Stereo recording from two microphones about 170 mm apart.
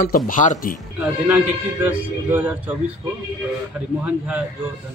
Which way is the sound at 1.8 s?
10° right (ahead or behind).